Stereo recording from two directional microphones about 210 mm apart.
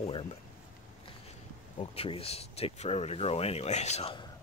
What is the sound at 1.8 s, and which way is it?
Speech, 25° left (ahead or behind).